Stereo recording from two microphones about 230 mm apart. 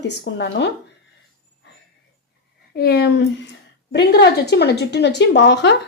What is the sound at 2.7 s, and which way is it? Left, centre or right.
Speech, left.